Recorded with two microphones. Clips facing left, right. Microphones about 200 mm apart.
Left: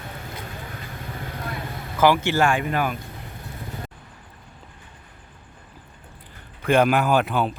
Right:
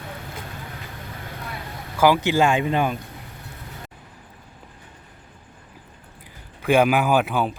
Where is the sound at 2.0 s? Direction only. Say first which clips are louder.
Right 1 dB; 15° right (ahead or behind).